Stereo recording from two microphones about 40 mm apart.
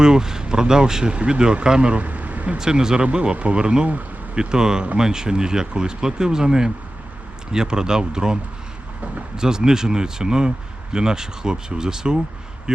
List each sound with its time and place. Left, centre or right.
0.0 s speech: centre
2.0 s vehicle: right
2.6 s speech: centre
9.4 s speech: centre